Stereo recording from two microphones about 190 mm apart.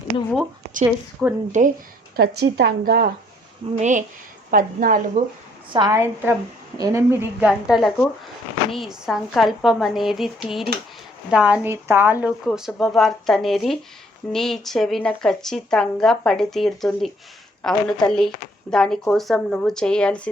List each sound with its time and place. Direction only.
1.2 s speech: 5° right (ahead or behind)
2.1 s a woman's voice: 55° right (ahead or behind)
3.8 s a woman's voice: 40° right (ahead or behind)
5.7 s speech: 20° right (ahead or behind); by 20.3 s 5° left (ahead or behind)